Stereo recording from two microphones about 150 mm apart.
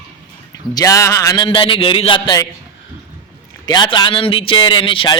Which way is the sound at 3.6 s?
30° left (ahead or behind).